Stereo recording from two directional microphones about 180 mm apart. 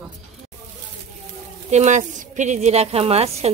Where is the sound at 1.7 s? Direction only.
40° right (ahead or behind).